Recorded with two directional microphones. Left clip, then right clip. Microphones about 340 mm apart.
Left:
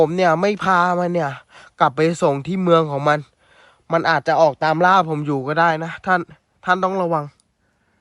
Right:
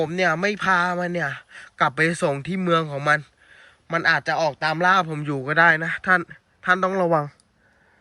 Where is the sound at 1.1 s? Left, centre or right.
Centre.